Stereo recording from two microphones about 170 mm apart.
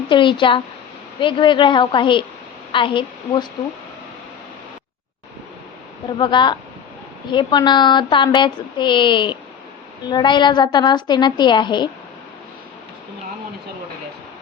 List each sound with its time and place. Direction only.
0.1 s speech: 30° left (ahead or behind)
6.1 s speech: 25° left (ahead or behind)